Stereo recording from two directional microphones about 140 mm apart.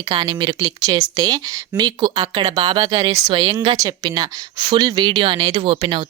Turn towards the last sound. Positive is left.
turn(degrees=-35)  # may be behind; listen again after turning